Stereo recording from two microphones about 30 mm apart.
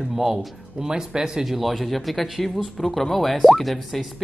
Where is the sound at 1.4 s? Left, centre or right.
Centre.